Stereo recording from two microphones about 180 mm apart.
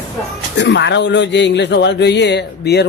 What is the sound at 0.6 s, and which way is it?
A man's voice, 75° left (ahead or behind).